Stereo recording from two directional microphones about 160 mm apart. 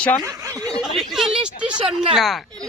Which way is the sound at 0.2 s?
20° right (ahead or behind).